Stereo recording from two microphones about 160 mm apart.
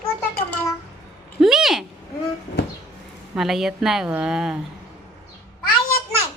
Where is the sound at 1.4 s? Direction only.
Centre (ahead or behind).